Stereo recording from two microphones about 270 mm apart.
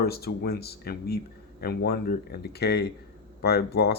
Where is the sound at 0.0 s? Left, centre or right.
Left.